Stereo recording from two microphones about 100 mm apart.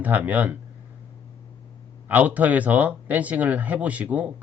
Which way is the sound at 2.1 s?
15° right (ahead or behind).